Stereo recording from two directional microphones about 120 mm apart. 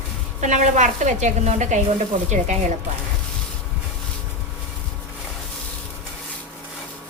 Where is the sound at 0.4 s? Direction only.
90° right.